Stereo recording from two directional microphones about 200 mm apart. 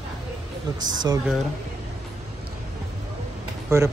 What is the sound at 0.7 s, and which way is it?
Speech, 20° right (ahead or behind).